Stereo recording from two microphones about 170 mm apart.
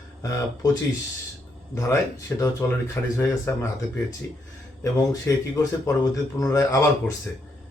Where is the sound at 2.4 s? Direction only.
20° left (ahead or behind).